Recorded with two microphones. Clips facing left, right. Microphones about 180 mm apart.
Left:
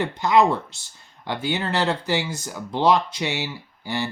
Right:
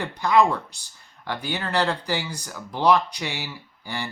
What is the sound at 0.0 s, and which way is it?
Speech, 20° left (ahead or behind).